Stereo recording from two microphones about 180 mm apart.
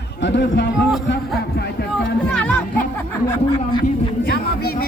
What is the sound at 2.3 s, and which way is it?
Music, 5° left (ahead or behind).